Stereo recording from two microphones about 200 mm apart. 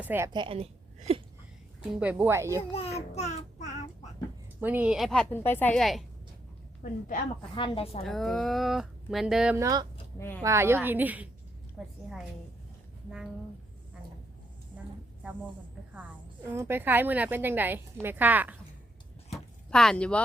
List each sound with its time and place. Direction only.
0.0 s a woman's voice: 10° right (ahead or behind)
0.3 s a sound: 25° right (ahead or behind)
2.0 s a woman's voice: 5° right (ahead or behind)
2.7 s child singing: 30° left (ahead or behind)
4.6 s speech: 10° right (ahead or behind)
5.3 s a woman's voice: 10° left (ahead or behind)
6.8 s a woman's voice: 40° left (ahead or behind)
7.5 s speech: 25° left (ahead or behind)
8.0 s speech: centre (ahead or behind)
9.6 s a woman's voice: 15° right (ahead or behind)
10.2 s a woman's voice: 10° left (ahead or behind)
10.4 s a woman's voice: 15° right (ahead or behind)
16.5 s a woman's voice: 10° right (ahead or behind)
19.7 s speech: 5° left (ahead or behind)